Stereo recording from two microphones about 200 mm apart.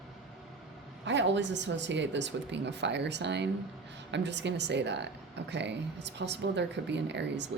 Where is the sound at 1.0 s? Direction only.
65° right (ahead or behind).